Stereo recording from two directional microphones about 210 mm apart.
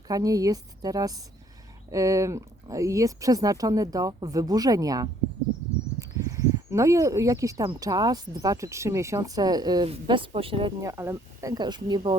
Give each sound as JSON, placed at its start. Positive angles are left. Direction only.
{"t": 0.1, "sound": "speech", "side_deg": -15}
{"t": 10.8, "sound": "speech", "side_deg": -15}